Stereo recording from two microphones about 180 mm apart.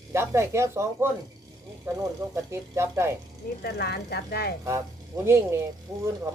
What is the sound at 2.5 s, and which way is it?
Speech, 15° right (ahead or behind).